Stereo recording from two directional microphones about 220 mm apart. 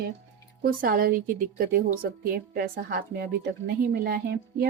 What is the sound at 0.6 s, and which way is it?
A woman's voice, 40° right (ahead or behind).